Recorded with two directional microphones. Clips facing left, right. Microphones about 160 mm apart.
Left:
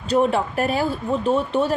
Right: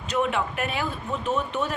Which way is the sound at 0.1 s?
35° left (ahead or behind).